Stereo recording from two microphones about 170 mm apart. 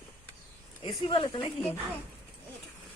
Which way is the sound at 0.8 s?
35° left (ahead or behind).